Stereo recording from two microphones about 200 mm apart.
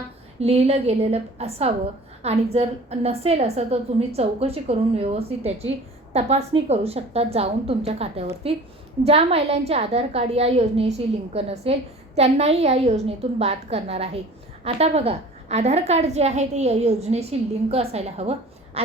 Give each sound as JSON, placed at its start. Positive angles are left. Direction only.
{"t": 0.3, "sound": "a woman's voice", "side_deg": -30}